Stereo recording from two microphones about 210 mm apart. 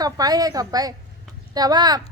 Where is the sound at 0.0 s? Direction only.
20° right (ahead or behind).